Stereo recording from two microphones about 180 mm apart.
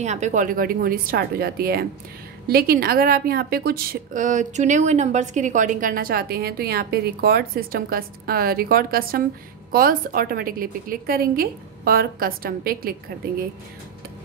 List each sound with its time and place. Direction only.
0.0 s a woman's voice: 40° right (ahead or behind); by 12.9 s 55° right (ahead or behind)